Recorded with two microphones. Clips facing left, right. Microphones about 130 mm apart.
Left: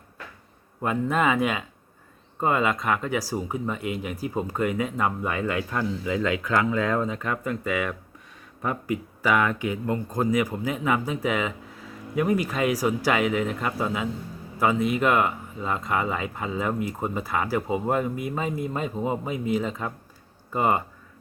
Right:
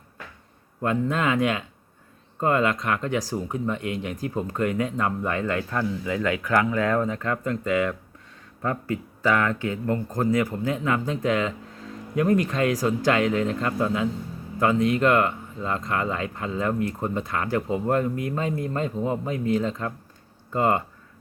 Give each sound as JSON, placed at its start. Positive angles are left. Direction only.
{"t": 0.8, "sound": "speech", "side_deg": 5}